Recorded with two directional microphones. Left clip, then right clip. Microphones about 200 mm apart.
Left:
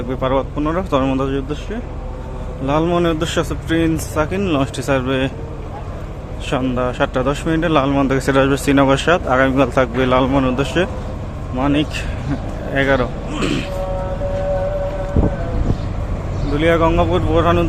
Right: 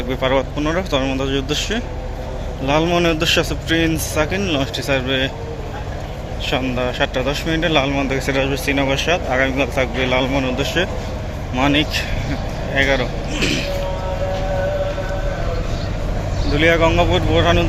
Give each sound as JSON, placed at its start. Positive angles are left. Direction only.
{"t": 0.1, "sound": "speech", "side_deg": 15}
{"t": 1.4, "sound": "speech", "side_deg": 10}
{"t": 6.5, "sound": "speech", "side_deg": 20}
{"t": 11.5, "sound": "speech", "side_deg": 10}
{"t": 16.6, "sound": "speech", "side_deg": 15}